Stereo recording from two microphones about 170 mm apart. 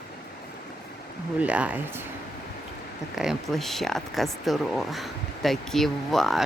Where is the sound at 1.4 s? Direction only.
10° right (ahead or behind).